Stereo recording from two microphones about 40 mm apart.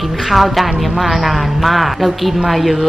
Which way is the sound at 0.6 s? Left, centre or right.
Centre.